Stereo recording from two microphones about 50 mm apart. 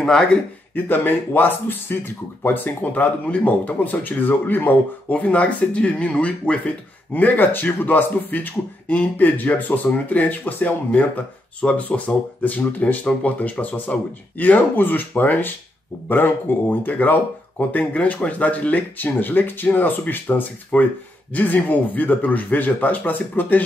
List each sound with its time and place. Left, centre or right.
0.0 s speech: centre
0.7 s speech: left
5.1 s speech: left
7.1 s speech: left
11.6 s speech: left